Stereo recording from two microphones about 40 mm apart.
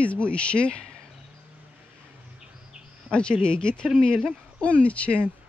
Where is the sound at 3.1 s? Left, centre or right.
Left.